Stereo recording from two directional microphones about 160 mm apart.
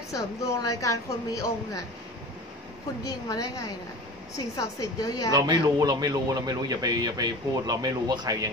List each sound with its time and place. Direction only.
0.1 s a woman's voice: 20° left (ahead or behind)
3.0 s a woman's voice: 20° left (ahead or behind)
5.3 s speech: 25° right (ahead or behind)